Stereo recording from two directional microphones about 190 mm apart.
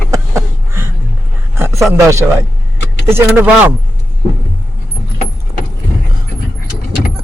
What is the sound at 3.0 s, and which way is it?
Speech, 10° right (ahead or behind).